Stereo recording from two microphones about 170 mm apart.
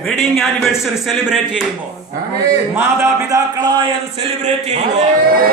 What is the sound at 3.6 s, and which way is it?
Speech, 25° right (ahead or behind).